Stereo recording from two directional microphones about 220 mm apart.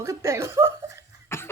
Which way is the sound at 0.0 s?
15° right (ahead or behind).